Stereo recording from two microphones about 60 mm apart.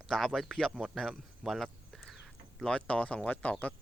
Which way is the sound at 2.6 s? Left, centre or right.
Centre.